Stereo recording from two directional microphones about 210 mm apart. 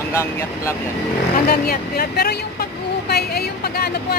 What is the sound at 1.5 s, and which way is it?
A woman's voice, 45° left (ahead or behind).